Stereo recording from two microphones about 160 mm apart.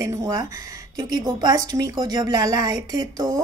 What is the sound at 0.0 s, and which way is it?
Speech, 20° right (ahead or behind).